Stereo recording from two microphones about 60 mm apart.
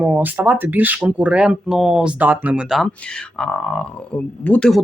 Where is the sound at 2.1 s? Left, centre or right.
Right.